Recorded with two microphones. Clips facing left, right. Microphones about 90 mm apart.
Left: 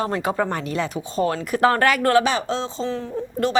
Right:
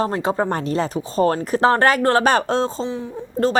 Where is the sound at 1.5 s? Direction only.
30° right (ahead or behind).